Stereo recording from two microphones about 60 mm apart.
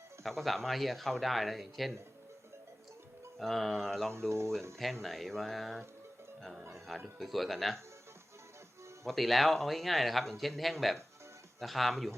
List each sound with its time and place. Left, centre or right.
0.2 s a man's voice: centre
3.3 s a man's voice: centre
4.3 s speech: right
5.0 s a man's voice: centre
9.0 s a man's voice: centre